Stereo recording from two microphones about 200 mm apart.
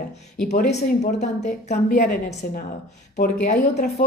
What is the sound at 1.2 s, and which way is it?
A woman's voice, 35° left (ahead or behind).